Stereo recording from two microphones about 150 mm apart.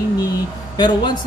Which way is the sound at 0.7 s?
30° left (ahead or behind).